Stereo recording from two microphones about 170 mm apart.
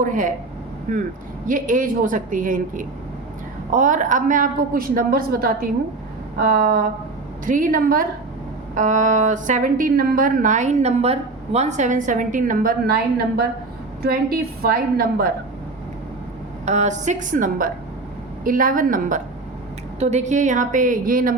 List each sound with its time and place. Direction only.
0.0 s a woman's voice: 50° right (ahead or behind)
16.6 s a woman's voice: 45° right (ahead or behind)